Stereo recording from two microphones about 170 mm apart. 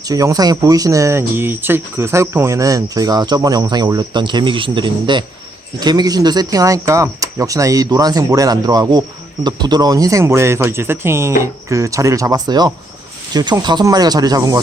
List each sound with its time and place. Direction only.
0.0 s speech: 20° right (ahead or behind)